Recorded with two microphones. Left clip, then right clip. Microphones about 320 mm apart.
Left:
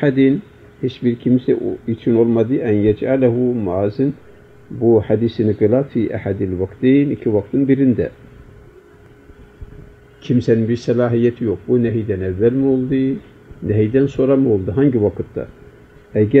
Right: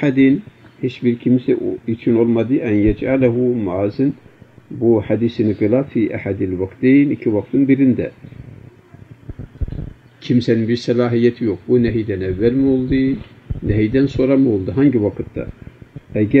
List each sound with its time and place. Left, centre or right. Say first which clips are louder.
0.0 s speech: even; centre
10.2 s speech: left 1 dB; centre